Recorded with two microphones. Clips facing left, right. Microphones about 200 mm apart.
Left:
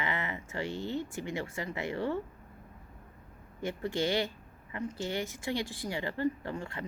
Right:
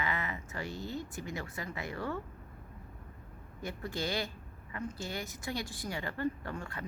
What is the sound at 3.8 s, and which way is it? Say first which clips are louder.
Speech: left 5 dB; 25° left (ahead or behind).